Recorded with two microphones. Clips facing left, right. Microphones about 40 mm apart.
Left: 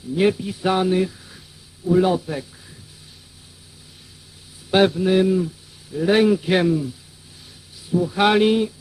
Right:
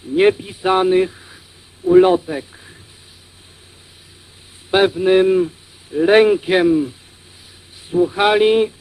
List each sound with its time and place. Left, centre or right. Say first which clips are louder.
0.1 s speech: right 5 dB; right
0.3 s speech: right 4 dB; right
2.2 s speech: right 3 dB; centre
4.7 s speech: right 2 dB; centre
5.0 s speech: right 5 dB; right
6.4 s speech: right 4 dB; centre
7.9 s speech: right 5 dB; right
8.2 s speech: right 1 dB; centre
8.4 s speech: right 5 dB; right